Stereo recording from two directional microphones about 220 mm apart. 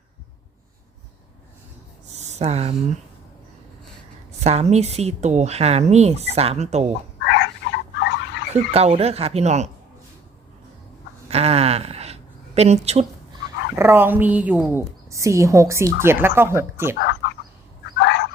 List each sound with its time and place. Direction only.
2.0 s a sound: 30° right (ahead or behind)
4.4 s speech: 30° right (ahead or behind)
7.2 s frog: 50° left (ahead or behind)
8.7 s speech: 30° right (ahead or behind)
11.3 s speech: 30° right (ahead or behind)
13.7 s a woman's voice: 10° right (ahead or behind)
17.0 s chicken: 50° left (ahead or behind)
17.9 s fowl: 50° left (ahead or behind)